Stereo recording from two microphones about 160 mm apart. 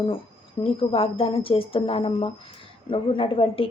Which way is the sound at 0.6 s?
35° left (ahead or behind).